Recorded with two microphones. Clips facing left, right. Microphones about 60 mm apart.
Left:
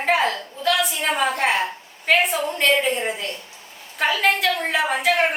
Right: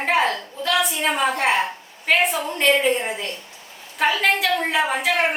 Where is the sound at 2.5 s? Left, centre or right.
Centre.